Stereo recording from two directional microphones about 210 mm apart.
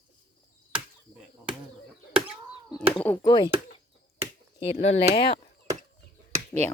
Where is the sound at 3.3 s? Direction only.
20° left (ahead or behind).